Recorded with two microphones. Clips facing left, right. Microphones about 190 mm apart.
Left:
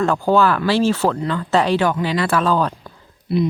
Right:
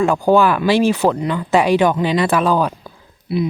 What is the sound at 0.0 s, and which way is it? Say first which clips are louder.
Speech: right 2 dB; 15° right (ahead or behind).